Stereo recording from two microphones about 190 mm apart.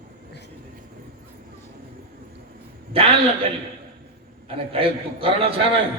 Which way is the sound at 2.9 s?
30° right (ahead or behind).